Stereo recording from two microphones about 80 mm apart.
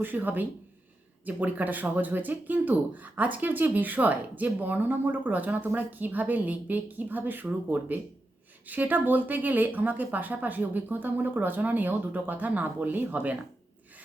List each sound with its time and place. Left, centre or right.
0.0 s speech: right